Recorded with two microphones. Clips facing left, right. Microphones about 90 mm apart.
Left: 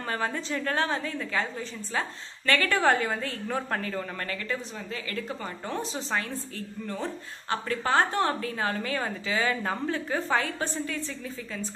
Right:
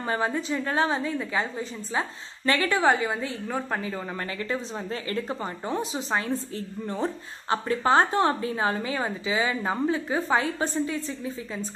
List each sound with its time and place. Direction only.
0.1 s speech: 20° right (ahead or behind)
2.7 s a woman's voice: 10° right (ahead or behind)
5.1 s speech: 25° right (ahead or behind)